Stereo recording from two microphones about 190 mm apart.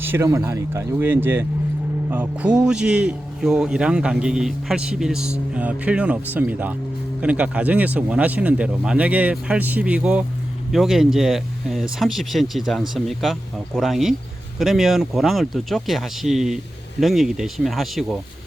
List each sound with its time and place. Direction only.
0.0 s a man's voice: 10° right (ahead or behind)